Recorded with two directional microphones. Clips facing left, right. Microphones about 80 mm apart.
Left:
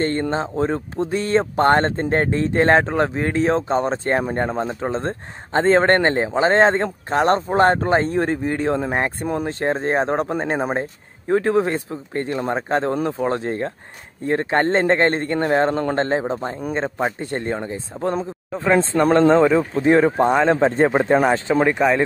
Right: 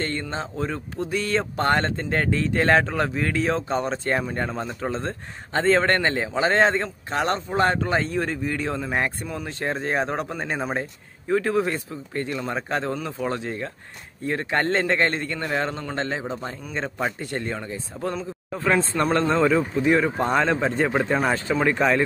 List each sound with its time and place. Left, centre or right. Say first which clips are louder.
0.0 s a man's voice: left 7 dB; left; by 22.0 s centre